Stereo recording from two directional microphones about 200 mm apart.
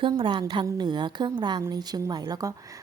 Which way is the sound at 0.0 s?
25° right (ahead or behind).